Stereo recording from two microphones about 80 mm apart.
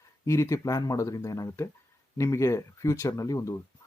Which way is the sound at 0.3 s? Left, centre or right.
Left.